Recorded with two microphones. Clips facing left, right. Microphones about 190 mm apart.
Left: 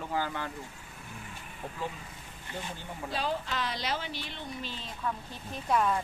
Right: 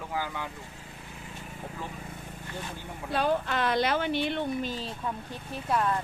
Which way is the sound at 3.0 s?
55° right (ahead or behind).